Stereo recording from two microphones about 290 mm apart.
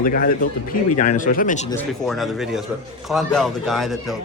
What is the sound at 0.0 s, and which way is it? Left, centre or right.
Speech, left.